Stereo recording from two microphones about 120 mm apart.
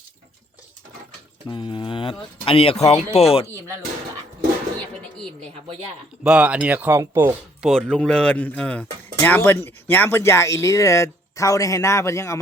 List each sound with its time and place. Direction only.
1.5 s speech: 40° left (ahead or behind); by 3.4 s 60° left (ahead or behind)
6.2 s speech: 10° right (ahead or behind)
7.6 s speech: 5° left (ahead or behind); by 12.4 s 25° left (ahead or behind)